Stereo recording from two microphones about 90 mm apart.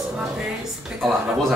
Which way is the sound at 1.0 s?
5° left (ahead or behind).